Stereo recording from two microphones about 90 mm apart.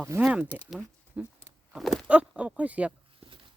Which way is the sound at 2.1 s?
15° right (ahead or behind).